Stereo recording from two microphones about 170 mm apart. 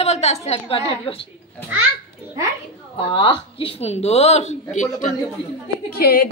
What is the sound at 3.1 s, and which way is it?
A woman's voice, 30° left (ahead or behind).